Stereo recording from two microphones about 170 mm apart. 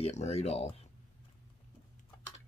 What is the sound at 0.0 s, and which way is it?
Speech, 40° left (ahead or behind).